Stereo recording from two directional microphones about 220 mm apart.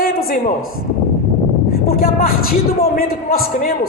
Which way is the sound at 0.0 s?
45° left (ahead or behind).